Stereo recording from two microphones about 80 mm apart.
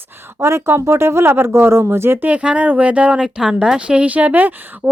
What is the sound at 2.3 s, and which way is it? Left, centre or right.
Speech, centre.